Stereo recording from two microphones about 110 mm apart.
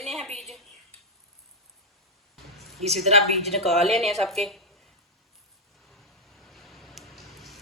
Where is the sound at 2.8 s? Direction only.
75° right (ahead or behind).